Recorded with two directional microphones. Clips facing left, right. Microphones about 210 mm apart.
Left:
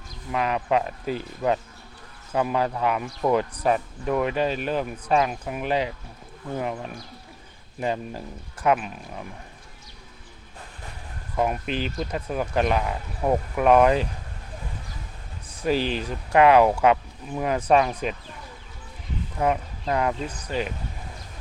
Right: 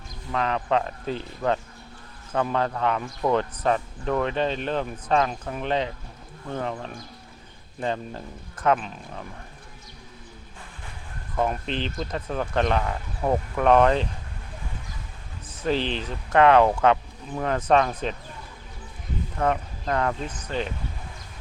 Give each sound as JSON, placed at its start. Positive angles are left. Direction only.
{"t": 0.3, "sound": "a man's voice", "side_deg": 10}
{"t": 11.3, "sound": "a man's voice", "side_deg": 10}
{"t": 15.6, "sound": "a man's voice", "side_deg": 10}
{"t": 19.4, "sound": "a man's voice", "side_deg": 10}